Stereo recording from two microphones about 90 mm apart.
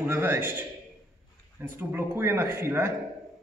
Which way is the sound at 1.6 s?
25° right (ahead or behind).